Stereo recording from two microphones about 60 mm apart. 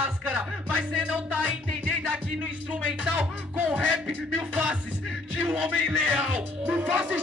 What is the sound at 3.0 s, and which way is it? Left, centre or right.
Music, right.